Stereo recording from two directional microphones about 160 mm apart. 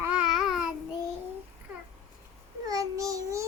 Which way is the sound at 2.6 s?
20° right (ahead or behind).